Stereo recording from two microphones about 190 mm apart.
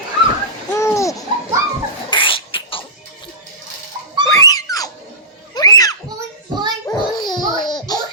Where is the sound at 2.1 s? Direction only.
25° left (ahead or behind).